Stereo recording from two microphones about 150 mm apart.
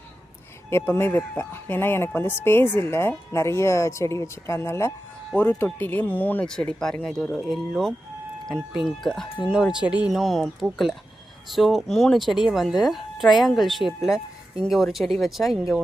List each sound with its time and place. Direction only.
0.7 s speech: 15° left (ahead or behind)
9.0 s speech: centre (ahead or behind)